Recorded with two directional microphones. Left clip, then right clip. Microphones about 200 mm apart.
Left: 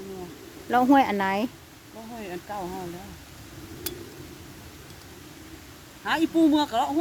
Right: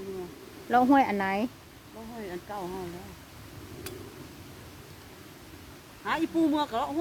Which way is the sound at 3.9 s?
50° left (ahead or behind).